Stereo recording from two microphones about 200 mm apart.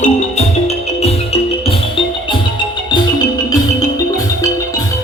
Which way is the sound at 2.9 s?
20° left (ahead or behind).